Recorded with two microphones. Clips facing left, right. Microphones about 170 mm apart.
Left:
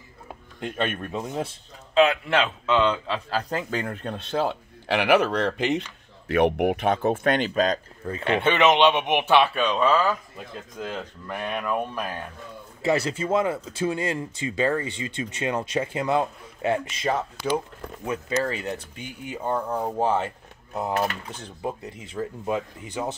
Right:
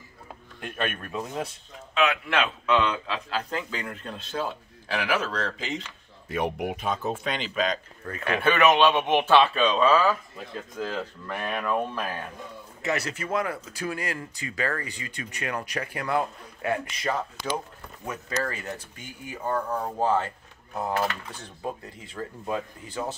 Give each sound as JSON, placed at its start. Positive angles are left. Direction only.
{"t": 0.6, "sound": "speech", "side_deg": 25}
{"t": 3.3, "sound": "speech", "side_deg": 40}
{"t": 8.1, "sound": "speech", "side_deg": 25}
{"t": 12.8, "sound": "speech", "side_deg": 30}